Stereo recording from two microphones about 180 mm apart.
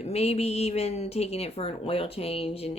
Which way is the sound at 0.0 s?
35° left (ahead or behind).